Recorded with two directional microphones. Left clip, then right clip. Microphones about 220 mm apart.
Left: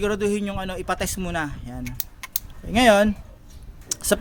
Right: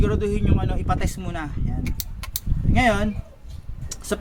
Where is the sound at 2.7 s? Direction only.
50° left (ahead or behind).